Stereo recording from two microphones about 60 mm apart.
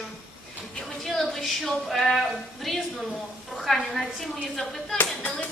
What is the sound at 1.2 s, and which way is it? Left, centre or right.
Speech, centre.